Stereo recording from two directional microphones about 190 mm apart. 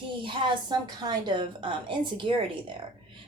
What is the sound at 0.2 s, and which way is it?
A woman's voice, 25° right (ahead or behind).